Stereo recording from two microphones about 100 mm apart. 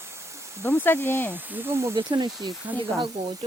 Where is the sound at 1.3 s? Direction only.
20° right (ahead or behind).